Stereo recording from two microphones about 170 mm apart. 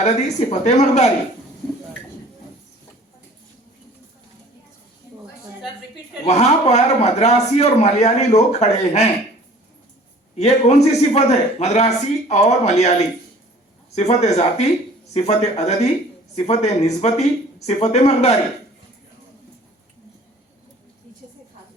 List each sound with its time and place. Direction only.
0.0 s a man's voice: 45° left (ahead or behind)
6.2 s a man's voice: 40° left (ahead or behind)
10.3 s a man's voice: 40° left (ahead or behind)